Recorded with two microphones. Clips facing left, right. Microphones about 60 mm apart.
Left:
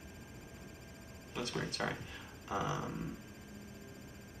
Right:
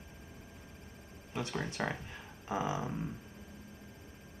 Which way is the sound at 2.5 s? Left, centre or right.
Right.